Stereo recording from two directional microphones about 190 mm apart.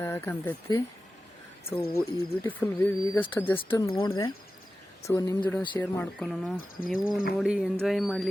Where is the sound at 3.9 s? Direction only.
25° left (ahead or behind); by 8.3 s centre (ahead or behind).